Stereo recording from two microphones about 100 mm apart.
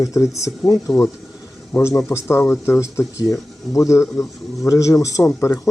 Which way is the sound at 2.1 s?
25° left (ahead or behind).